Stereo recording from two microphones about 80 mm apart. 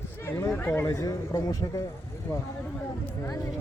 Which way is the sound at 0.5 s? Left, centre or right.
Left.